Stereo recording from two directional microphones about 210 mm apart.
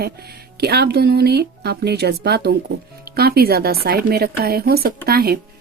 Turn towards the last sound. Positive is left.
turn(degrees=-50)  # may be behind; listen again after turning